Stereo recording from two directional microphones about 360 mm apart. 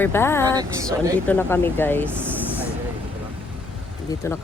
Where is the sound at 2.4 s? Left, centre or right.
Centre.